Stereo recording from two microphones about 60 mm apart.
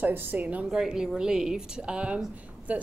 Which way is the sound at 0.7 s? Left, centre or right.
Centre.